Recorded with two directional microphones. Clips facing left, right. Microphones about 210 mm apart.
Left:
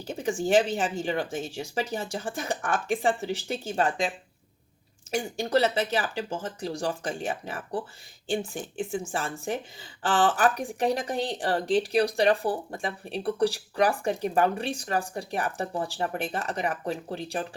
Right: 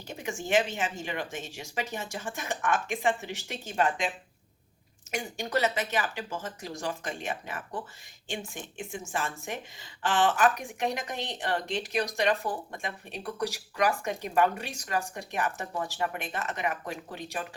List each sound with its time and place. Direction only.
0.2 s speech: 35° left (ahead or behind)
5.1 s speech: 30° left (ahead or behind)